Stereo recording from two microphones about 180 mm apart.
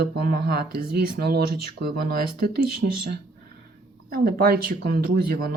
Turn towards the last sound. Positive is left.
turn(degrees=-55)  # may be behind; listen again after turning